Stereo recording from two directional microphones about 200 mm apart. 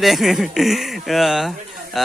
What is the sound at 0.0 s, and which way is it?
A man's voice, centre (ahead or behind).